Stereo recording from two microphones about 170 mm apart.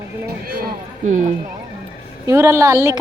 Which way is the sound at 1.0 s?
45° right (ahead or behind).